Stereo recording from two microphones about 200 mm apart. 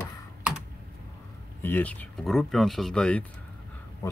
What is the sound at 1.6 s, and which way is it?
Speech, 10° left (ahead or behind).